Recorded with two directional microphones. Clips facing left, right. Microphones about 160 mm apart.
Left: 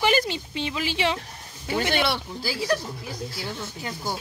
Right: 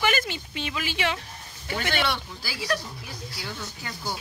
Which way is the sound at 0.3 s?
25° left (ahead or behind).